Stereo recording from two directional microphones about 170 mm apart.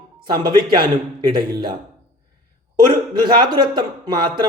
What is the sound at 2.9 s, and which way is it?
Speech, 25° right (ahead or behind).